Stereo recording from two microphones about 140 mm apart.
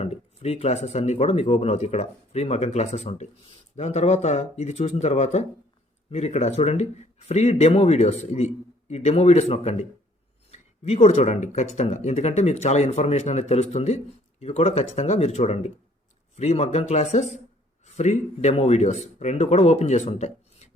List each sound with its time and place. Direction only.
0.0 s speech: 50° left (ahead or behind)